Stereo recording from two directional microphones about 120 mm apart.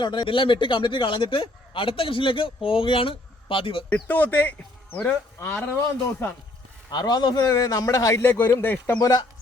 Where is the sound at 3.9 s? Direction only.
15° left (ahead or behind).